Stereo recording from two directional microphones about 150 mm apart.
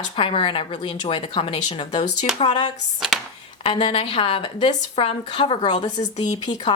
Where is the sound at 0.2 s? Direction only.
35° left (ahead or behind).